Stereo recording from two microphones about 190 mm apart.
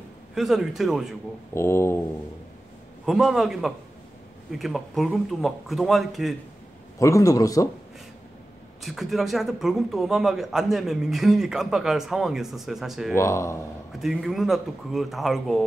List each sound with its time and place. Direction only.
0.3 s a man's voice: centre (ahead or behind)
1.5 s a man's voice: 15° left (ahead or behind)
3.1 s a man's voice: centre (ahead or behind)
7.0 s a man's voice: 15° left (ahead or behind)
8.8 s a man's voice: centre (ahead or behind)
13.1 s a man's voice: 15° left (ahead or behind)
13.9 s a man's voice: centre (ahead or behind)